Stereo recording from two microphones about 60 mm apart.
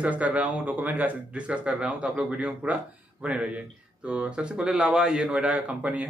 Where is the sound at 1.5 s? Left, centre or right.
Centre.